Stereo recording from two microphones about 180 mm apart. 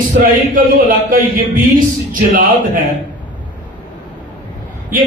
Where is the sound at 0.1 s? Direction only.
50° right (ahead or behind).